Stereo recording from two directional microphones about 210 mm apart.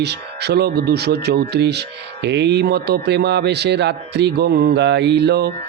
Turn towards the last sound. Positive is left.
turn(degrees=-50)  # may be behind; listen again after turning